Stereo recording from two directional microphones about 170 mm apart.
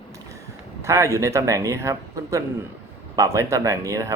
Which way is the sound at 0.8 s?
15° right (ahead or behind).